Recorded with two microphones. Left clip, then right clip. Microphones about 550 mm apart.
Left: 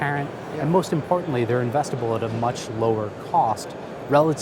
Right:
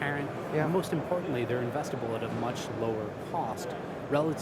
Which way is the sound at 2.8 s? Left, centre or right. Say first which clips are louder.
Left 11 dB; left.